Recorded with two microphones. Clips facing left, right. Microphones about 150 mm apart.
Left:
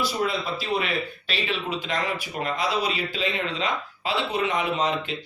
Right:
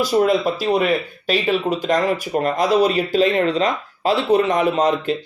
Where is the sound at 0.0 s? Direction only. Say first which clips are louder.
Right 10 dB; 45° right (ahead or behind).